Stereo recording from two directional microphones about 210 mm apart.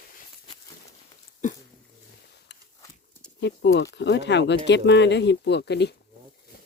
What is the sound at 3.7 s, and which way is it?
Speech, 55° left (ahead or behind).